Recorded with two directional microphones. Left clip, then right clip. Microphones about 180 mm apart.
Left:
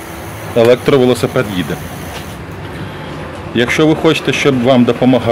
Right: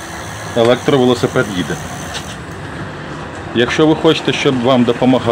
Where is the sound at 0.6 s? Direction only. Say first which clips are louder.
Left 3 dB; 45° left (ahead or behind).